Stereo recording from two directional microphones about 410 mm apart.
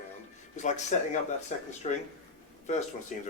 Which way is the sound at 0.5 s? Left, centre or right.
Centre.